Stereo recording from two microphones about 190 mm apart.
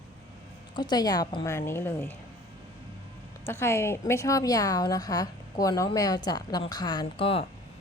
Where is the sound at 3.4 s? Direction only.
15° left (ahead or behind); by 7.4 s 30° left (ahead or behind).